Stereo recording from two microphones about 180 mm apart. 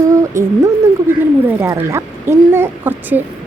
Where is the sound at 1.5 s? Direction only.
10° right (ahead or behind).